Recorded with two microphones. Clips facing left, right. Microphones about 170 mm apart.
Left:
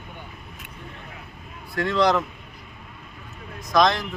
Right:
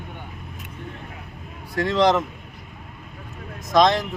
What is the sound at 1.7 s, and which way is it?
Speech, 20° right (ahead or behind).